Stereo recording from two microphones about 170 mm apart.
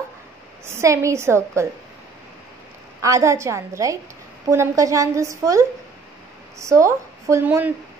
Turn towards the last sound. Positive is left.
turn(degrees=-10)  # may be behind; listen again after turning